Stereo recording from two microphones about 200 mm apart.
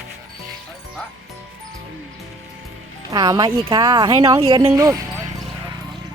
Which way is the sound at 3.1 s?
20° right (ahead or behind).